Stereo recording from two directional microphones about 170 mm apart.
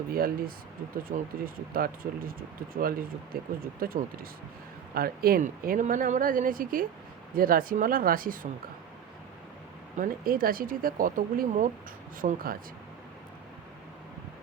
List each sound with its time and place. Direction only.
0.1 s speech: 60° right (ahead or behind)
10.0 s speech: 60° right (ahead or behind)